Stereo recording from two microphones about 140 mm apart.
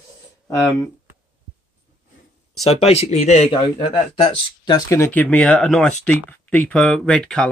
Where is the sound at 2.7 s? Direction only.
45° left (ahead or behind).